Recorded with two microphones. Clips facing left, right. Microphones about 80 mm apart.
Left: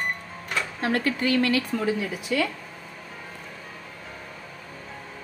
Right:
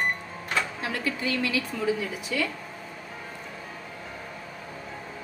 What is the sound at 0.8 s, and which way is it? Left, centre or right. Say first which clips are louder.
A woman's voice: left 5 dB; left.